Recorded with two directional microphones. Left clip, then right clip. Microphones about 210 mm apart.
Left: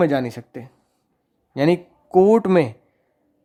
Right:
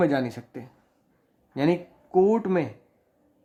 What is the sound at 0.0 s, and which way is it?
Speech, 30° left (ahead or behind).